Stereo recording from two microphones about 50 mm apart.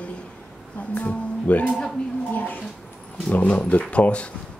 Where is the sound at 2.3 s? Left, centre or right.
Left.